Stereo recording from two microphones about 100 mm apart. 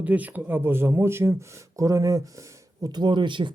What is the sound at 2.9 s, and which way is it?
Speech, 50° right (ahead or behind).